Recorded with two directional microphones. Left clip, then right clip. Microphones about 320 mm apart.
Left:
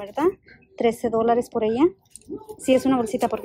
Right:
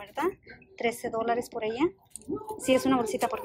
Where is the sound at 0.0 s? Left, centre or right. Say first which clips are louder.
Left 8 dB; centre.